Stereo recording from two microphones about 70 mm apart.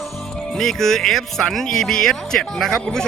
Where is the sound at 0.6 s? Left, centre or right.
Centre.